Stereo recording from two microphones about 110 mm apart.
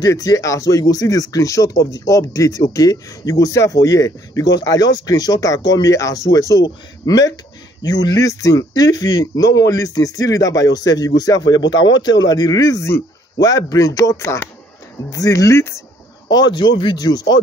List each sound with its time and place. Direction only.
0.0 s speech: 35° left (ahead or behind)
16.3 s speech: 40° left (ahead or behind)